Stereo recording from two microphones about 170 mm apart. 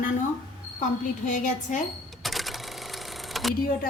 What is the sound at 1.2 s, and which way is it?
Speech, 45° left (ahead or behind).